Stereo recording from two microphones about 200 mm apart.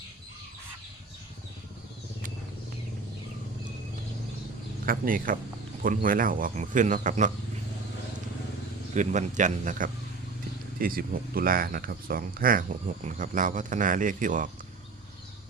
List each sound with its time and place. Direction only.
4.9 s speech: 45° right (ahead or behind)
9.0 s speech: 40° right (ahead or behind)